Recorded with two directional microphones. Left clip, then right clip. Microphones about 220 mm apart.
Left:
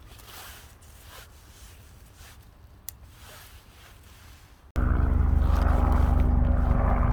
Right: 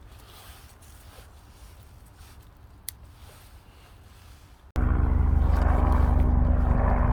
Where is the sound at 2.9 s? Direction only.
10° left (ahead or behind).